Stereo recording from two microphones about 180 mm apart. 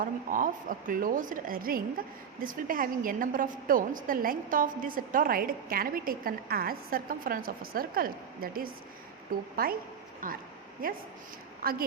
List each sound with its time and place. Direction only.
0.0 s a woman's voice: 50° right (ahead or behind)